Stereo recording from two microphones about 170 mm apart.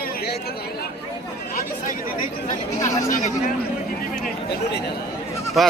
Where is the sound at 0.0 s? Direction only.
70° left (ahead or behind).